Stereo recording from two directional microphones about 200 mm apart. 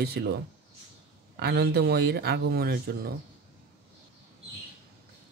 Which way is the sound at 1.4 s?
50° right (ahead or behind).